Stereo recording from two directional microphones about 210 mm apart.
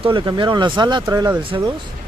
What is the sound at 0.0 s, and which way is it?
Speech, 25° right (ahead or behind).